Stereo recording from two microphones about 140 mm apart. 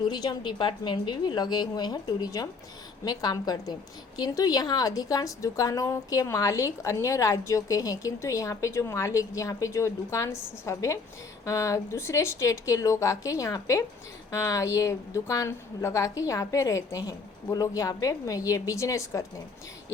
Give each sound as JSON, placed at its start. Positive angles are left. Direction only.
{"t": 0.1, "sound": "a woman's voice", "side_deg": 30}